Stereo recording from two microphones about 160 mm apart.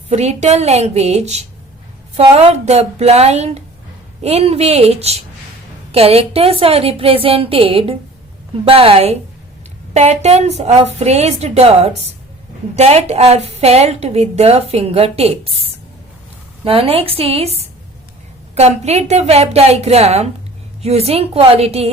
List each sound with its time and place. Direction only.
0.1 s a woman's voice: 45° right (ahead or behind)
16.6 s a woman's voice: 35° right (ahead or behind)